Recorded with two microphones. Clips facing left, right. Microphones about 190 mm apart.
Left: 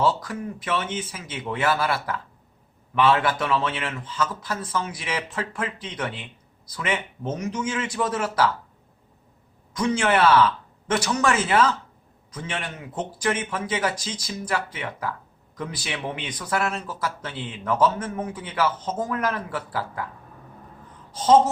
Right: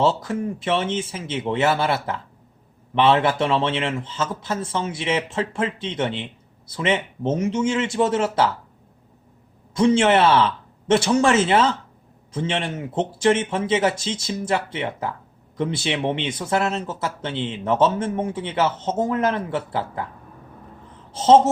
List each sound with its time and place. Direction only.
0.0 s speech: 25° right (ahead or behind)
9.7 s speech: 25° right (ahead or behind)
21.1 s speech: 25° right (ahead or behind)